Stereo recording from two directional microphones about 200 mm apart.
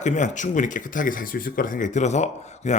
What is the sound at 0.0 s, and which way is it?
A man's voice, 35° left (ahead or behind).